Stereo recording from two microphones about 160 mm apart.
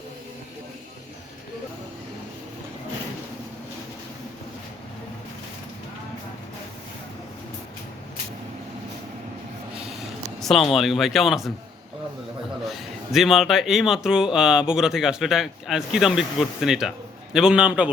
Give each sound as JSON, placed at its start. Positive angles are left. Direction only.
{"t": 10.4, "sound": "speech", "side_deg": 0}
{"t": 12.7, "sound": "speech", "side_deg": 0}